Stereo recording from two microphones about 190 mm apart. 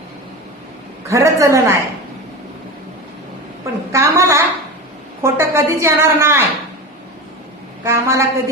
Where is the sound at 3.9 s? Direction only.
15° right (ahead or behind).